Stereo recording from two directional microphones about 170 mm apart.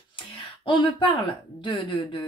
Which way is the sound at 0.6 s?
30° left (ahead or behind).